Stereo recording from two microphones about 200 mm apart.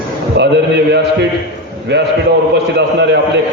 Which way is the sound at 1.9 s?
60° right (ahead or behind).